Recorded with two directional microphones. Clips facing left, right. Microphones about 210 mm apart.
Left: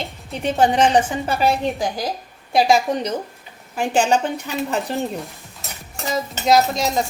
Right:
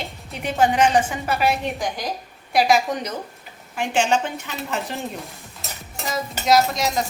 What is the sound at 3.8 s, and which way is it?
A woman's voice, 35° left (ahead or behind).